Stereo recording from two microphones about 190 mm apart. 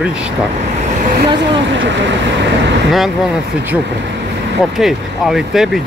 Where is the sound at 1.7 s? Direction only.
70° right (ahead or behind).